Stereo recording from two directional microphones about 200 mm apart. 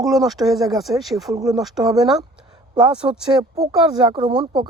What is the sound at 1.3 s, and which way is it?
Speech, 15° right (ahead or behind).